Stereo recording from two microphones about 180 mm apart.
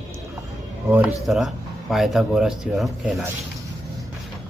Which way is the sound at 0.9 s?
5° right (ahead or behind).